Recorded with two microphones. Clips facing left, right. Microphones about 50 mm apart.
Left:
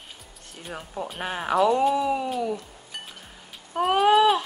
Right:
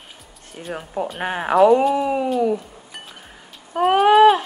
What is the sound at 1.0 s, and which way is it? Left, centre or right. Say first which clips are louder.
A woman's voice: right 6 dB; right.